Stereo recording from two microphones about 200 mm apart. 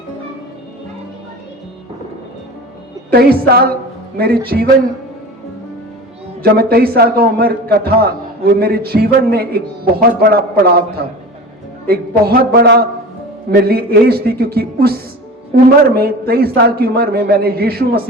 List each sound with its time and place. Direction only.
3.1 s a man's voice: 50° right (ahead or behind)
6.4 s a man's voice: 50° right (ahead or behind)
11.9 s a man's voice: 50° right (ahead or behind)